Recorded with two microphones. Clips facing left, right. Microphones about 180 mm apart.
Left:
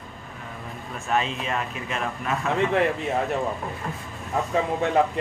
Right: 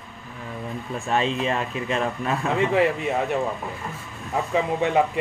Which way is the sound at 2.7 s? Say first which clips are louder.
Right 2 dB; 5° right (ahead or behind).